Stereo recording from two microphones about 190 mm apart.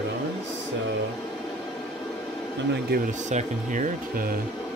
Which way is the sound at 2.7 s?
55° right (ahead or behind).